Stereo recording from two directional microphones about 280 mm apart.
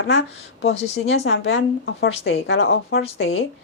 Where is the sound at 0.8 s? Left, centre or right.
Left.